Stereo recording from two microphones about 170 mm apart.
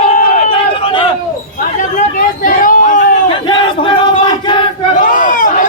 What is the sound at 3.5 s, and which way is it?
Battle cry, 30° left (ahead or behind).